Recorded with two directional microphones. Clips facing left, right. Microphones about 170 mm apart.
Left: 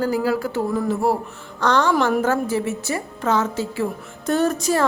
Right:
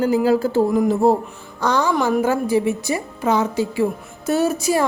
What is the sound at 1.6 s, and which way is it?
A woman's voice, 10° right (ahead or behind).